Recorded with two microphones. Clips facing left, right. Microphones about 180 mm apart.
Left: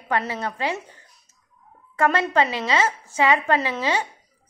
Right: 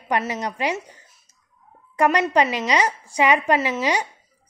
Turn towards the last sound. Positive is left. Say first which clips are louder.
# right 2 dB
turn(degrees=-15)  # may be behind; listen again after turning